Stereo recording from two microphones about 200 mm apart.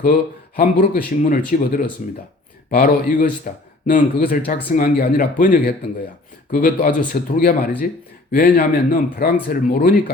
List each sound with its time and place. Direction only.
0.0 s speech: 45° left (ahead or behind)